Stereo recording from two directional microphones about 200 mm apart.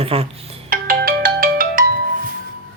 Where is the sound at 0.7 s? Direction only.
45° right (ahead or behind).